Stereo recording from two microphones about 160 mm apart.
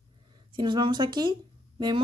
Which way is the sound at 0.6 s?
30° right (ahead or behind).